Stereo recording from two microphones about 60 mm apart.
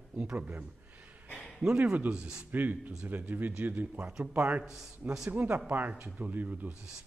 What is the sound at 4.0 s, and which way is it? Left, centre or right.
Speech, centre.